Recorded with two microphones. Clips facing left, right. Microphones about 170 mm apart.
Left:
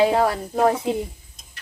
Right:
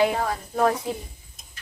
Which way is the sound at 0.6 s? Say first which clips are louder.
Left 3 dB; 25° left (ahead or behind).